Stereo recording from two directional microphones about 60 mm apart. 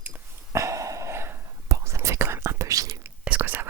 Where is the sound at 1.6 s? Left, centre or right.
Right.